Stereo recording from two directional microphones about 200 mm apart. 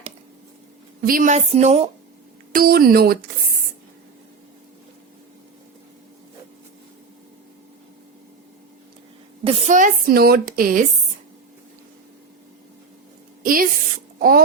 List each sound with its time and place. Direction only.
1.0 s a woman's voice: 45° right (ahead or behind)
2.5 s speech: 45° right (ahead or behind)
9.4 s a woman's voice: 30° right (ahead or behind); by 10.8 s 45° right (ahead or behind)
13.4 s a woman's voice: 45° right (ahead or behind)